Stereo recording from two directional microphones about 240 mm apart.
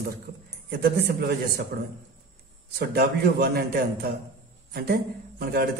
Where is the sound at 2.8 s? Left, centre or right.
Right.